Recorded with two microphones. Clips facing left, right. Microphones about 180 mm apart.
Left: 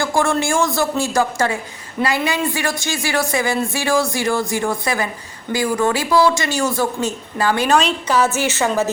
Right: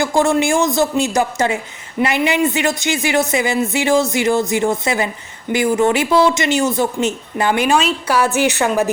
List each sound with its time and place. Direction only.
0.0 s a woman's voice: 20° right (ahead or behind)